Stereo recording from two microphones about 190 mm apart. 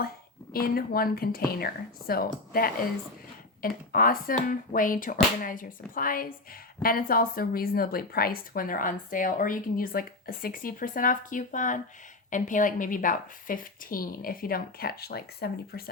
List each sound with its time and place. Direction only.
0.5 s a woman's voice: 50° left (ahead or behind)